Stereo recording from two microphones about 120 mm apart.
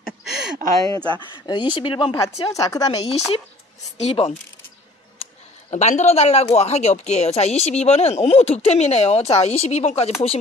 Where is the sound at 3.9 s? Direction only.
60° left (ahead or behind).